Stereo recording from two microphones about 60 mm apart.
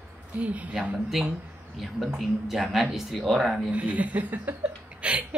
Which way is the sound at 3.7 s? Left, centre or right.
Right.